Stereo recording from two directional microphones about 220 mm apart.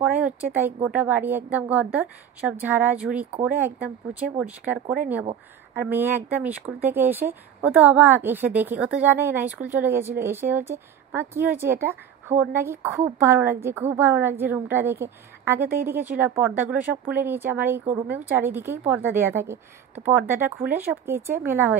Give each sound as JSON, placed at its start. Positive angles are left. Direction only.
{"t": 0.0, "sound": "speech", "side_deg": -5}